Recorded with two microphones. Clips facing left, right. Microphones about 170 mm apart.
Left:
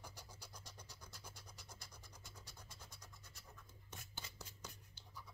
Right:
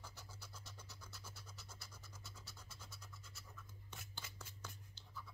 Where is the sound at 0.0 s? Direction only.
15° left (ahead or behind).